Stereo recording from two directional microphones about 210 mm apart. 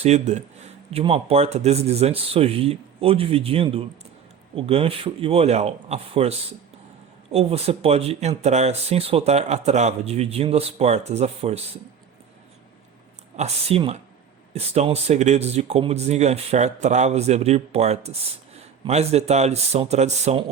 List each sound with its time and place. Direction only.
0.0 s speech: 30° right (ahead or behind)
13.3 s speech: 30° right (ahead or behind)